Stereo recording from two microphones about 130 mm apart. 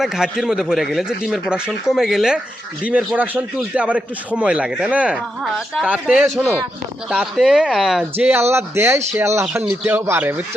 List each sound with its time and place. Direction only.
0.0 s a man's voice: 5° right (ahead or behind)
5.9 s a man's voice: 10° right (ahead or behind)
8.2 s a man's voice: 15° right (ahead or behind)